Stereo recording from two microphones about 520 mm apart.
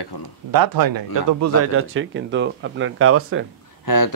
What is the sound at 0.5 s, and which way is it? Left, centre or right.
Speech, right.